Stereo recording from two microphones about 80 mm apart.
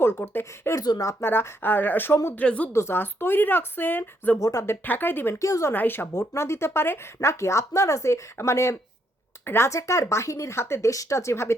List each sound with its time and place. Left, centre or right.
0.0 s speech: left
0.8 s speech: left
1.2 s speech: left
2.4 s a woman's voice: centre
2.7 s speech: left
4.4 s speech: left
4.6 s speech: left
5.4 s speech: left
5.7 s speech: left